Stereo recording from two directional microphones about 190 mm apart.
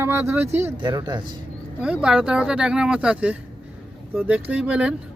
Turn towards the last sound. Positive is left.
turn(degrees=-5)  # may be behind; listen again after turning